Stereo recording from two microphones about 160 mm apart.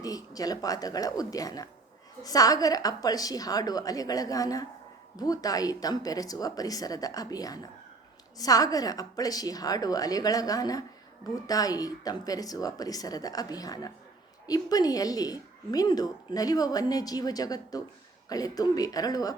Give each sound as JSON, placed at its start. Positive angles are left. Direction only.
{"t": 0.0, "sound": "speech", "side_deg": 25}